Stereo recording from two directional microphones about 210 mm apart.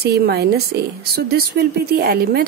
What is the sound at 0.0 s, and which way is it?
Speech, 50° right (ahead or behind).